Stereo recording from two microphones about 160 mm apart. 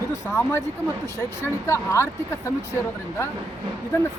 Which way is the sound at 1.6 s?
20° left (ahead or behind).